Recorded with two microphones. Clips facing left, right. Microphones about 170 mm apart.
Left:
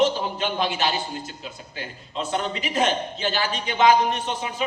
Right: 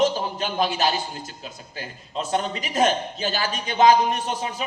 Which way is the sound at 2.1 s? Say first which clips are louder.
Right 1 dB; 40° right (ahead or behind).